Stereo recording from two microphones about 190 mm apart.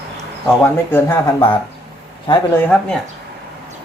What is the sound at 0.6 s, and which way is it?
Speech, 10° left (ahead or behind).